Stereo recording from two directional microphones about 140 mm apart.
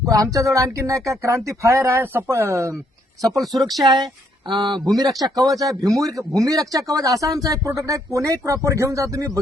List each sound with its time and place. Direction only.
0.0 s speech: 25° right (ahead or behind)
3.4 s speech: centre (ahead or behind)
3.8 s speech: 30° right (ahead or behind)